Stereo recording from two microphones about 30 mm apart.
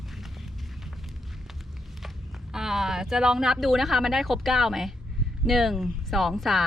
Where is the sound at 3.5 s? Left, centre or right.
Centre.